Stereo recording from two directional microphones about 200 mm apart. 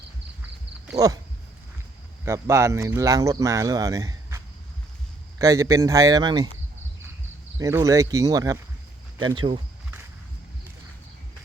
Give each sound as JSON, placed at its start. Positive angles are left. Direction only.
{"t": 0.9, "sound": "speech", "side_deg": -15}
{"t": 2.2, "sound": "speech", "side_deg": -15}
{"t": 7.6, "sound": "speech", "side_deg": -15}